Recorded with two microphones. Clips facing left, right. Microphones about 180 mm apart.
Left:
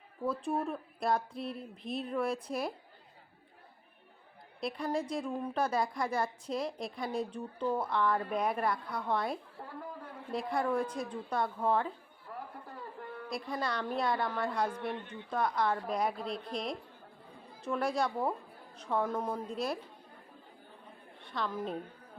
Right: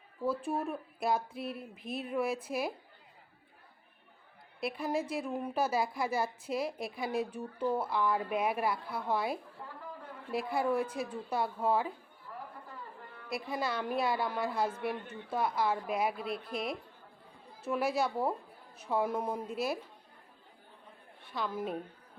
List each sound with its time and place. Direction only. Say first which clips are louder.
0.3 s a woman's voice: even; 5° right (ahead or behind)
4.6 s a woman's voice: even; 5° right (ahead or behind)
9.6 s a sound: left 1 dB; 35° left (ahead or behind)
10.3 s a woman's voice: right 1 dB; 5° right (ahead or behind)
13.3 s a woman's voice: right 1 dB; 5° right (ahead or behind)
21.2 s a woman's voice: even; 5° right (ahead or behind)